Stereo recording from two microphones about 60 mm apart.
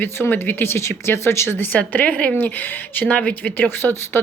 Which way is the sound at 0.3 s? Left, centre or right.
Left.